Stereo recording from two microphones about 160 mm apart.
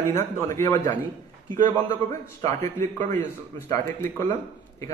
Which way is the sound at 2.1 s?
20° left (ahead or behind).